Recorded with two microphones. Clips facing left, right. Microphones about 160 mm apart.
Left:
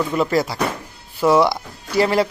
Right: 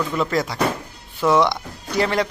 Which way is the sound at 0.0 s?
10° left (ahead or behind).